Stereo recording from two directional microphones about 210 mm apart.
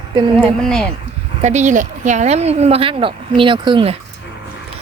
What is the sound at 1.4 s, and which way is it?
Speech, 35° right (ahead or behind).